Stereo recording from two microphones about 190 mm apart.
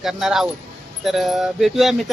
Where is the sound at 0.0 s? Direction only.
Centre (ahead or behind).